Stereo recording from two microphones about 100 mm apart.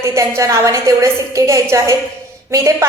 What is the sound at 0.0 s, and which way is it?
A woman's voice, 30° right (ahead or behind).